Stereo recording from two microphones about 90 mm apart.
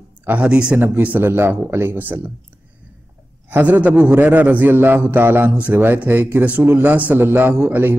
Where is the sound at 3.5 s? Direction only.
15° right (ahead or behind).